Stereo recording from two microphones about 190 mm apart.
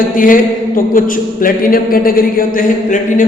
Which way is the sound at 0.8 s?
45° left (ahead or behind).